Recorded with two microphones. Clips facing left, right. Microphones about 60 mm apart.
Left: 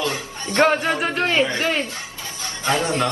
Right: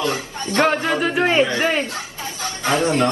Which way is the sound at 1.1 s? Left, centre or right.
Right.